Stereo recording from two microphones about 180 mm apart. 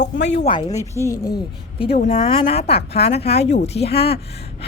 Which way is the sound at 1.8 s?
55° left (ahead or behind).